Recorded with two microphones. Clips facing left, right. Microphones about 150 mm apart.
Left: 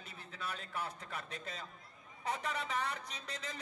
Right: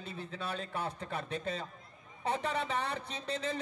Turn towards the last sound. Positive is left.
turn(degrees=-30)  # may be behind; listen again after turning